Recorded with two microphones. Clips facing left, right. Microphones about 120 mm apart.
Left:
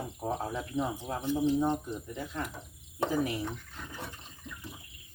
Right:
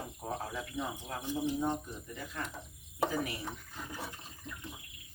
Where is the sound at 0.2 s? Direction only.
25° left (ahead or behind).